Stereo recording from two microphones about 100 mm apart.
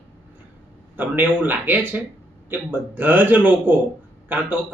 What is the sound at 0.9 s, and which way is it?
A man's voice, 20° right (ahead or behind).